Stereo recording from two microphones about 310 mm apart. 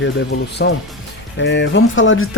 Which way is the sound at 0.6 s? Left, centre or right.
Left.